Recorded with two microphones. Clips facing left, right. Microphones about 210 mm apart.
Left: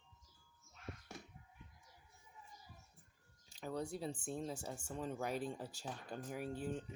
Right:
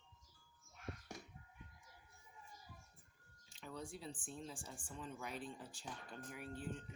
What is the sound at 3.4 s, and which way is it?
Speech, 40° left (ahead or behind).